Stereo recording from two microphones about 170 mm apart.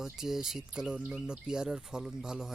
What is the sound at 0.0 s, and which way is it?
Speech, 5° right (ahead or behind).